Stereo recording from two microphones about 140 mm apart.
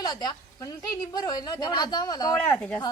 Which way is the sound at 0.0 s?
30° left (ahead or behind).